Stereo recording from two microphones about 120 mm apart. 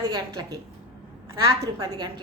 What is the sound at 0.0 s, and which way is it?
Speech, 35° right (ahead or behind).